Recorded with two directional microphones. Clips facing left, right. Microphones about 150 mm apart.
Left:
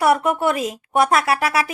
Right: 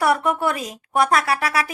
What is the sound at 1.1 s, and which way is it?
Speech, 25° left (ahead or behind).